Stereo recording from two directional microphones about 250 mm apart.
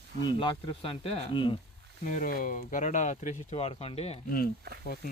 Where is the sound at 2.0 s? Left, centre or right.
Left.